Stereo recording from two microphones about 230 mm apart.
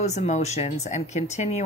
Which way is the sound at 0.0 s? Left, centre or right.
Left.